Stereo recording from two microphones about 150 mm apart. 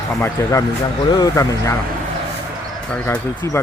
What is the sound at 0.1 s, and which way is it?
Speech, 15° left (ahead or behind).